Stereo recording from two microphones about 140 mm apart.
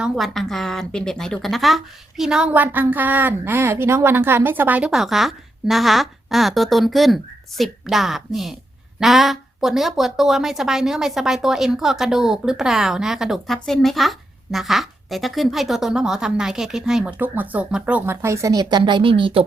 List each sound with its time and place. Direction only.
0.0 s a woman's voice: centre (ahead or behind); by 19.5 s 40° right (ahead or behind)